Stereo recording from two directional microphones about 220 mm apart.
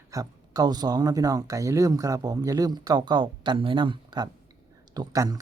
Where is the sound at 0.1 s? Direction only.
15° right (ahead or behind).